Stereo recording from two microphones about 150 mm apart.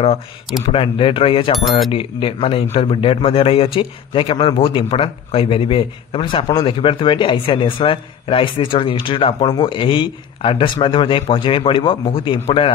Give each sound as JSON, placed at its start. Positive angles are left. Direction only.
{"t": 0.7, "sound": "speech", "side_deg": 35}